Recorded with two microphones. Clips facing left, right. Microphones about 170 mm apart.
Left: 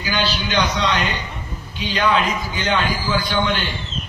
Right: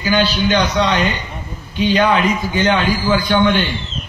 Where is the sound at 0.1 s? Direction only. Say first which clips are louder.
Right 6 dB; 50° right (ahead or behind).